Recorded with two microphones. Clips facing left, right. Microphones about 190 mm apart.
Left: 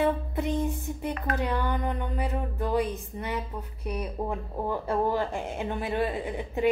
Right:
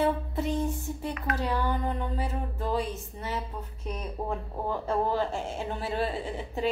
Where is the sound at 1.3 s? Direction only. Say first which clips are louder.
Even; 15° left (ahead or behind).